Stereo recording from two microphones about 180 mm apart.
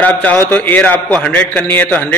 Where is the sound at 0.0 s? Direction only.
10° left (ahead or behind).